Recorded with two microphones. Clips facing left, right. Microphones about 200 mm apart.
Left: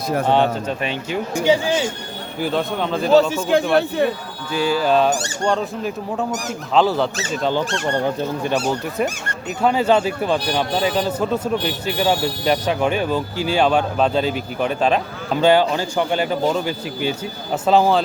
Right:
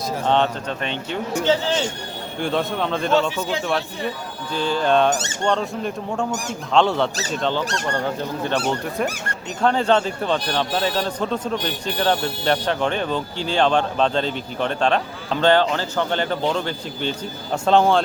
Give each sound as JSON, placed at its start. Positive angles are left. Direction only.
{"t": 0.3, "sound": "speech", "side_deg": 10}
{"t": 2.4, "sound": "a man's voice", "side_deg": 0}
{"t": 3.2, "sound": "a man's voice", "side_deg": 45}
{"t": 3.8, "sound": "speech", "side_deg": 60}
{"t": 4.5, "sound": "a man's voice", "side_deg": 10}
{"t": 5.1, "sound": "speech", "side_deg": -20}
{"t": 5.5, "sound": "a man's voice", "side_deg": 5}
{"t": 7.9, "sound": "speech", "side_deg": 20}